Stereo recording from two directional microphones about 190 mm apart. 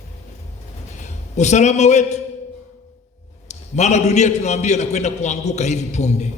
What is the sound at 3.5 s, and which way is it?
A man's voice, 35° left (ahead or behind).